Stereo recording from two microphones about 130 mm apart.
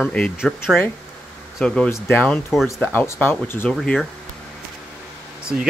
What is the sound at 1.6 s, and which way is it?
Speech, 5° left (ahead or behind).